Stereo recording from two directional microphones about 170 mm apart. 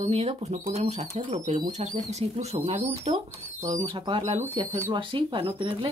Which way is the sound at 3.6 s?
20° right (ahead or behind).